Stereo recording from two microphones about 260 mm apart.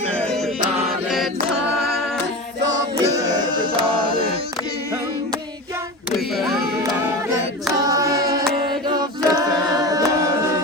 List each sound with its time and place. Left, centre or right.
0.1 s choir: centre
3.0 s music: centre
6.1 s a sound: centre
7.8 s a capella: centre